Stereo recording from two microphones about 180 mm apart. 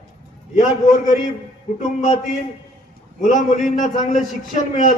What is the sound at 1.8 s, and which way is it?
Speech, 45° left (ahead or behind).